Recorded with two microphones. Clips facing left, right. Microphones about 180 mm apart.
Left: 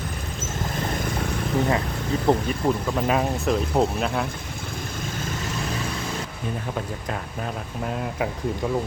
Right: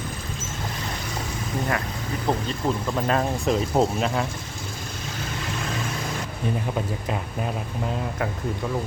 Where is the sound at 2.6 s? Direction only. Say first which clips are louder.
Right 1 dB; 5° left (ahead or behind).